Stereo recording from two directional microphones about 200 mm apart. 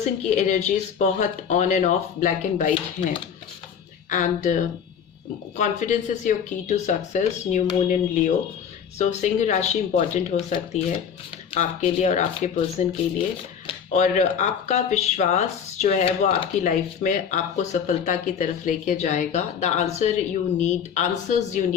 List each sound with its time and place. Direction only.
0.0 s speech: 35° left (ahead or behind)
4.1 s speech: 40° left (ahead or behind)